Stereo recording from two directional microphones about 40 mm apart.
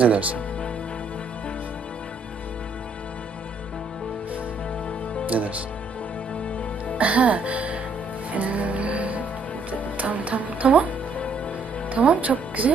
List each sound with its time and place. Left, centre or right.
0.0 s speech: right
5.2 s speech: right
7.0 s music: right
11.9 s music: right